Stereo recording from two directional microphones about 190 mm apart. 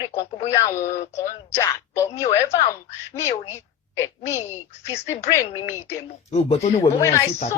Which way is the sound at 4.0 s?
15° left (ahead or behind).